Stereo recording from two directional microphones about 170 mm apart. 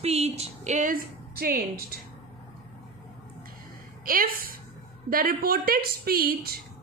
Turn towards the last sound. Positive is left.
turn(degrees=-60)  # may be behind; listen again after turning